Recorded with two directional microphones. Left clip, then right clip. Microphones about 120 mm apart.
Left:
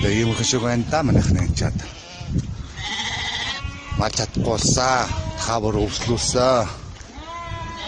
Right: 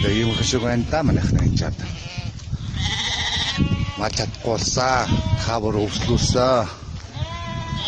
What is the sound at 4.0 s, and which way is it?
Speech, 15° left (ahead or behind).